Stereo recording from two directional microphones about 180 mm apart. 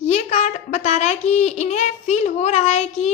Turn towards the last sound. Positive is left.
turn(degrees=40)  # may be behind; listen again after turning